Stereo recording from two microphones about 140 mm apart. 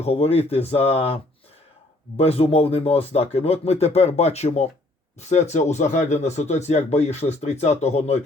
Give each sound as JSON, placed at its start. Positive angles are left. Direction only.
{"t": 0.0, "sound": "speech", "side_deg": 45}
{"t": 2.1, "sound": "speech", "side_deg": 45}